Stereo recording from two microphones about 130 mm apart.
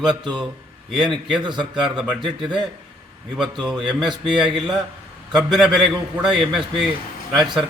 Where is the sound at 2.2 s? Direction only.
35° right (ahead or behind).